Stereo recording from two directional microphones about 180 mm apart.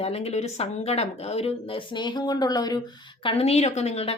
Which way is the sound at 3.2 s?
35° left (ahead or behind).